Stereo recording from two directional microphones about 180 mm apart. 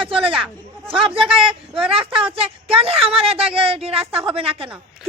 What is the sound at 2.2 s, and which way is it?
A woman's voice, 30° right (ahead or behind).